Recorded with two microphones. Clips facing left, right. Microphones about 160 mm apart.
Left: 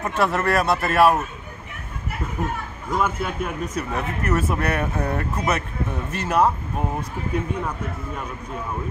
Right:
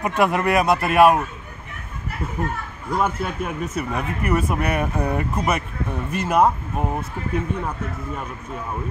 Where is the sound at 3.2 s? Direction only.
5° right (ahead or behind).